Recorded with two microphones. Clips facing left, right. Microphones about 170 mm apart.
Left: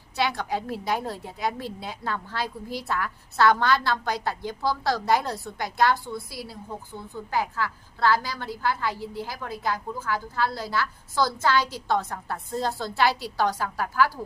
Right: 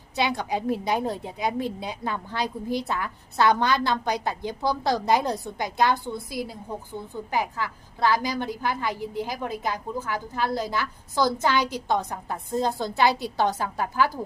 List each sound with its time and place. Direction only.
0.2 s a woman's voice: 20° right (ahead or behind)